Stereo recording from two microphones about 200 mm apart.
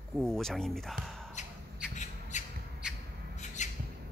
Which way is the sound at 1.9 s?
35° left (ahead or behind).